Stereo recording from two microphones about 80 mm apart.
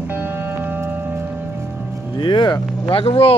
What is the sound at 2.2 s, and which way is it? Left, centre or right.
Music, left.